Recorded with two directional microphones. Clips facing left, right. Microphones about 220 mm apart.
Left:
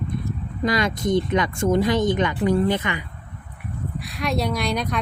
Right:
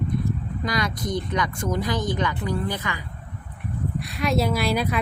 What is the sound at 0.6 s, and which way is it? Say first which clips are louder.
Speech: left 6 dB; 25° left (ahead or behind).